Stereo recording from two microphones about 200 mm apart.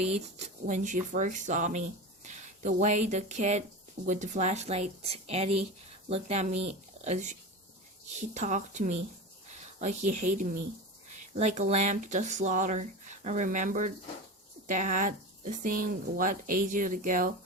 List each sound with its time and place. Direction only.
0.6 s speech: 40° right (ahead or behind)